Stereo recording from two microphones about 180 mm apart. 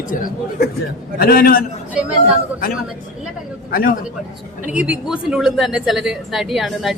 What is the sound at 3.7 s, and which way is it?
Speech, 50° left (ahead or behind).